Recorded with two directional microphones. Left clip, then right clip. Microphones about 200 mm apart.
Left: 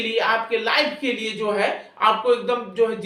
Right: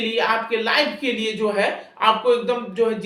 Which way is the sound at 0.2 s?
25° right (ahead or behind).